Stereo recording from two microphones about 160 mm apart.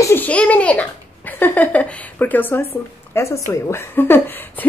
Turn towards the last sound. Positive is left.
turn(degrees=15)  # may be behind; listen again after turning